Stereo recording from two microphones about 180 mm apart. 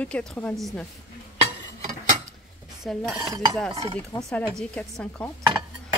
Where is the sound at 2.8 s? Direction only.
Centre (ahead or behind).